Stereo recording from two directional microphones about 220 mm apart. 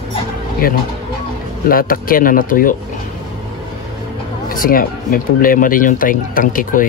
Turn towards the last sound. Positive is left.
turn(degrees=40)  # may be behind; listen again after turning